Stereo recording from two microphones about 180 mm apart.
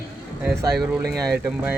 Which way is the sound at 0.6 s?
20° right (ahead or behind).